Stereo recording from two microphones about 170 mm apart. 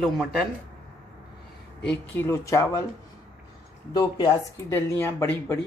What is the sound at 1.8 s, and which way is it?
Speech, 15° left (ahead or behind).